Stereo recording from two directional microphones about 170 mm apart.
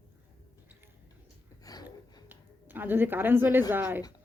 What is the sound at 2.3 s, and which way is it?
Speech, 10° right (ahead or behind).